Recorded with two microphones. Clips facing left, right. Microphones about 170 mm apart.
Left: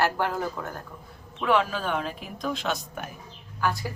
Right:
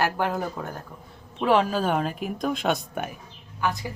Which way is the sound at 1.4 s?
35° right (ahead or behind).